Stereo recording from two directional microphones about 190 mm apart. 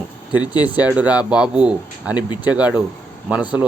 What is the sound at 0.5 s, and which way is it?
Speech, 20° left (ahead or behind).